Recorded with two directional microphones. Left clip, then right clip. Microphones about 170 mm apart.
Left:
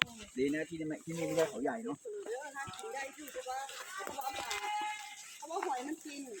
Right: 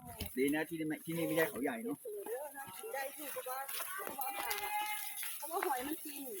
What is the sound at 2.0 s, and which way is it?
Snake, 5° left (ahead or behind).